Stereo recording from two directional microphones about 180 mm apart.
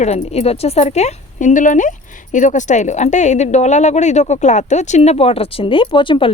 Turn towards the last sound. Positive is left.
turn(degrees=30)  # may be behind; listen again after turning